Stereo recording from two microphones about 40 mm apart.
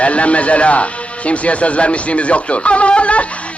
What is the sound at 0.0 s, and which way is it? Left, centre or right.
Speech, left.